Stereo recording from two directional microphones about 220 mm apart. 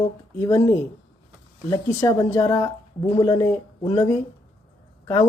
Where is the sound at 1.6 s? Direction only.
15° left (ahead or behind).